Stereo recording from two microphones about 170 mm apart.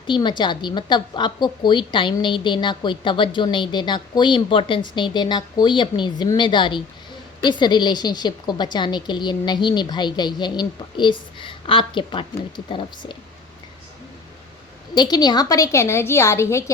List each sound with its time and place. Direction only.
0.1 s a woman's voice: 25° left (ahead or behind)
14.9 s a woman's voice: 25° left (ahead or behind)